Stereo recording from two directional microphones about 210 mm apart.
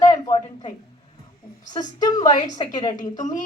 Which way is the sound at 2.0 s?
20° left (ahead or behind).